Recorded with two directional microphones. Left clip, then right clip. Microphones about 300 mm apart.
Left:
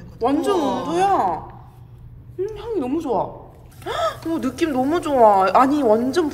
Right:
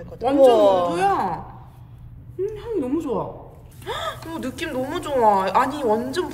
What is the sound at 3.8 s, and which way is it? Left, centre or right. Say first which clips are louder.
A woman's voice: left 6 dB; left.